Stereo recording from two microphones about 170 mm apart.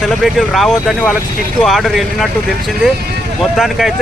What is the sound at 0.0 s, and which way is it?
Speech, centre (ahead or behind).